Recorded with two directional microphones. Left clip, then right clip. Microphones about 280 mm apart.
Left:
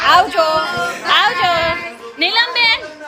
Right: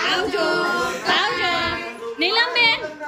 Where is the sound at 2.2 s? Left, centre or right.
Centre.